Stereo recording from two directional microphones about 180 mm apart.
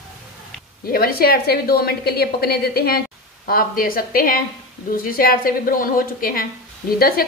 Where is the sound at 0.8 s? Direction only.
55° left (ahead or behind).